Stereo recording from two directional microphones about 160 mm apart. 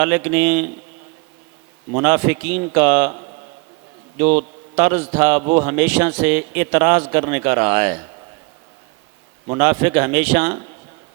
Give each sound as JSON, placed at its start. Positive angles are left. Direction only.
{"t": 0.0, "sound": "a man's voice", "side_deg": -25}
{"t": 1.9, "sound": "a man's voice", "side_deg": -30}
{"t": 5.0, "sound": "a man's voice", "side_deg": -20}
{"t": 5.3, "sound": "a man's voice", "side_deg": -30}
{"t": 5.9, "sound": "a man's voice", "side_deg": -20}
{"t": 9.5, "sound": "a man's voice", "side_deg": -30}